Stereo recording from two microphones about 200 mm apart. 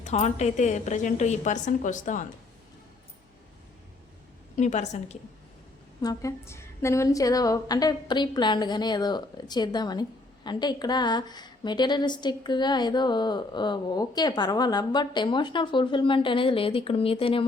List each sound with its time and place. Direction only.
0.0 s a woman's voice: 35° left (ahead or behind)
4.5 s a woman's voice: 35° left (ahead or behind)
6.0 s a woman's voice: 15° left (ahead or behind)